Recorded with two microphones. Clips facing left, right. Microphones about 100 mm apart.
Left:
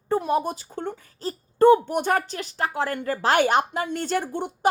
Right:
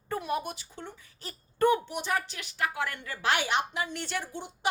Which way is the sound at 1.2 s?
35° left (ahead or behind).